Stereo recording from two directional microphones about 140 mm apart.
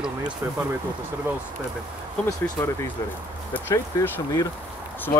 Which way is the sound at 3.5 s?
15° left (ahead or behind).